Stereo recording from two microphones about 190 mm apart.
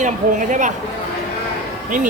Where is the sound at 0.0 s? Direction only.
40° right (ahead or behind).